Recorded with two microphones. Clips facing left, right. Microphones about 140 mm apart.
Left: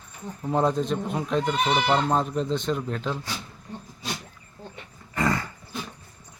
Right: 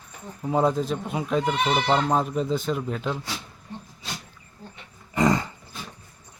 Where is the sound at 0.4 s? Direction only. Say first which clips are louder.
Right 1 dB; 5° right (ahead or behind).